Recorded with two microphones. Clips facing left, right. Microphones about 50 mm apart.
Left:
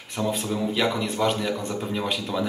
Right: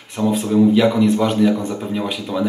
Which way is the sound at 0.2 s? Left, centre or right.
Centre.